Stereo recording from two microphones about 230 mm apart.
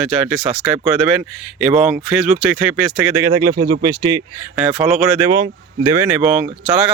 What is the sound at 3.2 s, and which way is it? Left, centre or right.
Speech, centre.